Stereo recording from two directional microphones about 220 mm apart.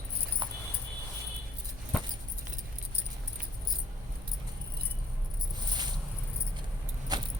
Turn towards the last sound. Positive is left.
turn(degrees=-20)  # may be behind; listen again after turning